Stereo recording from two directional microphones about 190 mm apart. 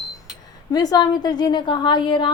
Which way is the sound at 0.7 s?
20° left (ahead or behind).